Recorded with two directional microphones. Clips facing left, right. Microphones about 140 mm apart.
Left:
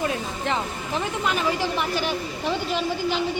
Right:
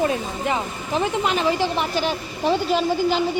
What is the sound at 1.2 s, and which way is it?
Speech, 25° right (ahead or behind).